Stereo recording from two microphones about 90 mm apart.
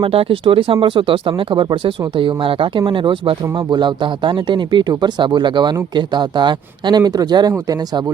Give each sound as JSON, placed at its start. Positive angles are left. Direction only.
{"t": 0.0, "sound": "speech", "side_deg": -90}